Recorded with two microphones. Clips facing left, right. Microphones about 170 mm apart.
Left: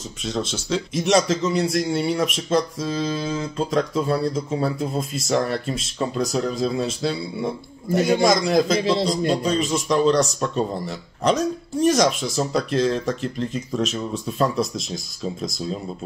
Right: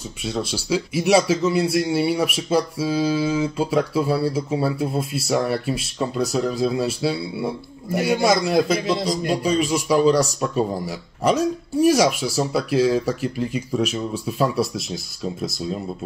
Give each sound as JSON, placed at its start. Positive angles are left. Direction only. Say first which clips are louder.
{"t": 0.2, "sound": "a man's voice", "louder": "even", "side_deg": -10}
{"t": 8.8, "sound": "speech", "louder": "left 2 dB", "side_deg": 25}
{"t": 9.3, "sound": "a man's voice", "louder": "right 1 dB", "side_deg": -10}